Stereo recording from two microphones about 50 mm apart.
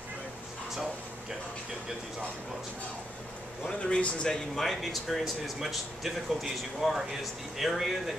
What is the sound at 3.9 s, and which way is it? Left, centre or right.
Speech, left.